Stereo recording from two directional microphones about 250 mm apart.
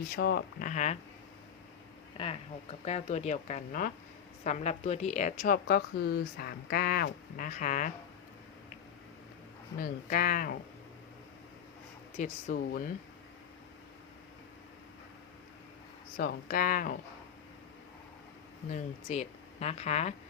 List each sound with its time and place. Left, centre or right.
0.1 s a woman's voice: left
2.1 s a woman's voice: left
9.7 s a woman's voice: left
12.1 s a woman's voice: left
16.1 s a woman's voice: left
18.7 s speech: left